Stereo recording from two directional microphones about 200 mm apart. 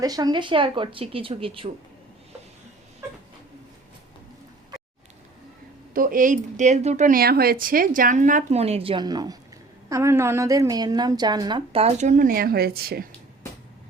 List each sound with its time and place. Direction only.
0.0 s a woman's voice: 20° right (ahead or behind)
5.9 s a woman's voice: 45° right (ahead or behind)